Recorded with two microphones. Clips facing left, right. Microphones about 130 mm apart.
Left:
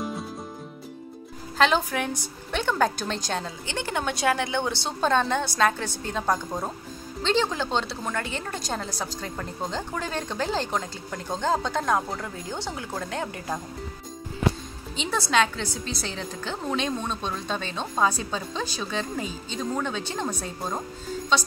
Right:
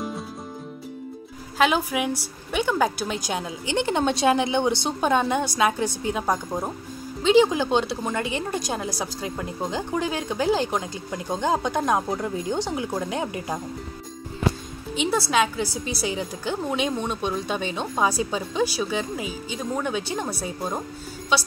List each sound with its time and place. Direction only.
1.6 s a woman's voice: 10° right (ahead or behind)
15.0 s a woman's voice: 5° right (ahead or behind)